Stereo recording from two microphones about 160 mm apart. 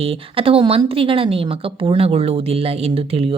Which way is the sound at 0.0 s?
35° right (ahead or behind).